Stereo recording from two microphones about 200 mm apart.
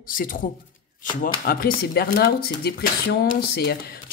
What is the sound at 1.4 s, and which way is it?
Speech, 50° left (ahead or behind).